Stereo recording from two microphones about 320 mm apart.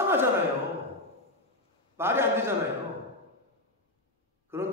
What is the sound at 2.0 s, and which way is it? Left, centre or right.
Speech, centre.